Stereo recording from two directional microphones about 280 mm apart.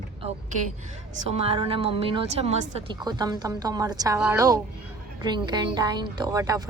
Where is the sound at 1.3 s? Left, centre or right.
Right.